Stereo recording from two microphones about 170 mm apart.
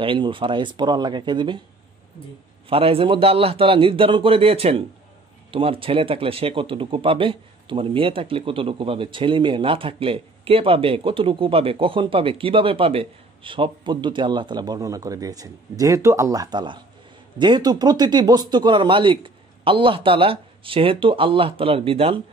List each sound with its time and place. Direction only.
0.0 s speech: 30° right (ahead or behind)
2.7 s speech: 35° right (ahead or behind)